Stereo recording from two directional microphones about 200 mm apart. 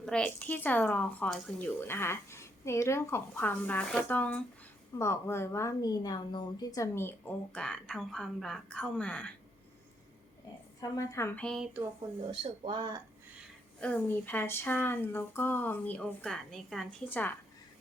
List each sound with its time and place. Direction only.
0.0 s a woman's voice: 5° left (ahead or behind)
10.8 s a woman's voice: 15° left (ahead or behind); by 11.8 s centre (ahead or behind)
12.3 s speech: 25° right (ahead or behind)
13.7 s a woman's voice: 5° left (ahead or behind)